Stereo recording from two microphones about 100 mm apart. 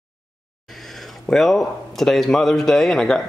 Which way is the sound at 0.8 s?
Centre (ahead or behind).